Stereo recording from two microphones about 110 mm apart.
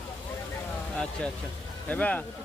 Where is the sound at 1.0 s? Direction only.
10° left (ahead or behind).